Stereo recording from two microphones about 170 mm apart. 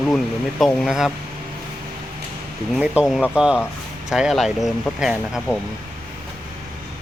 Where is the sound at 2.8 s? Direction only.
5° right (ahead or behind).